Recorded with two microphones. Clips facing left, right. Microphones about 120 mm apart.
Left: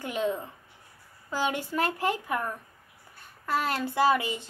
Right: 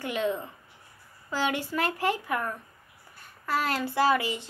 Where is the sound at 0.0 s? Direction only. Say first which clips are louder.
Even; 40° left (ahead or behind).